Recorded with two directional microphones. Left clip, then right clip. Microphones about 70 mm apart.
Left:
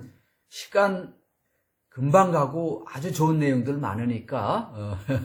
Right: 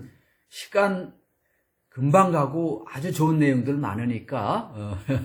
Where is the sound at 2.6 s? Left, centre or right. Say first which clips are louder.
Right 1 dB; left.